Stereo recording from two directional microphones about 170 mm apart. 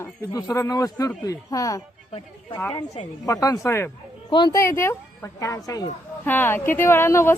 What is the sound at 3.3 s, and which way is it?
A man's voice, 20° left (ahead or behind).